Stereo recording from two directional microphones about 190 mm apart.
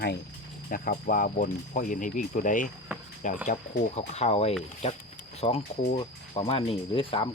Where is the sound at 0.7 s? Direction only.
50° left (ahead or behind).